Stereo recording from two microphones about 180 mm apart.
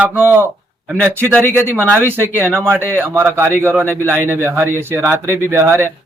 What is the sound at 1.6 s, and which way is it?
Speech, 10° right (ahead or behind).